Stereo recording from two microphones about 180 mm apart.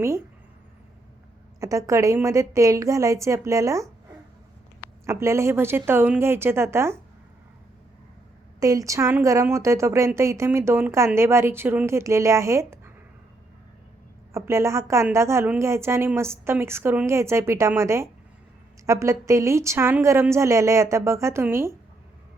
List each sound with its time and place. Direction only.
1.6 s a woman's voice: 15° right (ahead or behind)
5.0 s a woman's voice: 15° right (ahead or behind)
8.6 s a woman's voice: 20° right (ahead or behind)
14.3 s a woman's voice: 15° right (ahead or behind)